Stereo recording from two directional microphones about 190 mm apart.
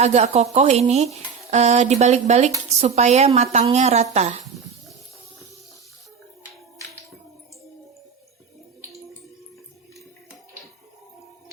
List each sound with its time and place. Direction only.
0.0 s speech: 35° right (ahead or behind)